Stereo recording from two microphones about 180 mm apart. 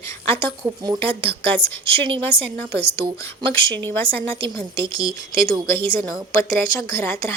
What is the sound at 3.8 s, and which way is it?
Speech, 25° right (ahead or behind).